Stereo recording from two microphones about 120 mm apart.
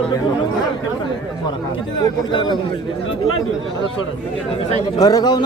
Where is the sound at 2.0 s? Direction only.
40° left (ahead or behind).